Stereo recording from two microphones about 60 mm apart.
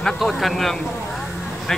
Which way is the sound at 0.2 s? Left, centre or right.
Centre.